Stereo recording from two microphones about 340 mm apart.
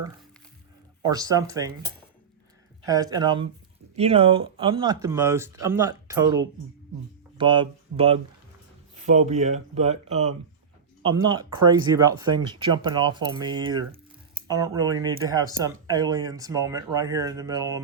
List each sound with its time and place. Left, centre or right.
1.0 s speech: centre
2.8 s speech: centre